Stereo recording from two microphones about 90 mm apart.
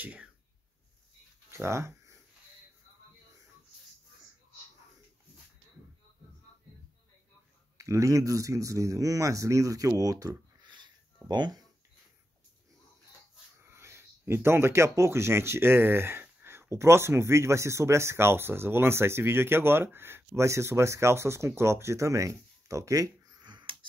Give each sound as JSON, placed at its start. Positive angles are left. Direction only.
{"t": 0.0, "sound": "speech", "side_deg": -15}
{"t": 1.5, "sound": "speech", "side_deg": -30}
{"t": 7.7, "sound": "speech", "side_deg": -35}
{"t": 10.7, "sound": "a sound", "side_deg": -55}
{"t": 13.7, "sound": "speech", "side_deg": -30}